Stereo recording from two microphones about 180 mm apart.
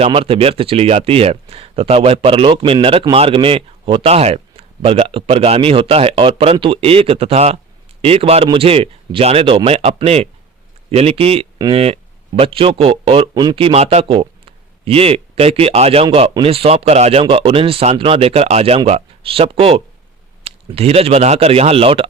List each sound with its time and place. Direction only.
0.0 s a man's voice: 30° right (ahead or behind)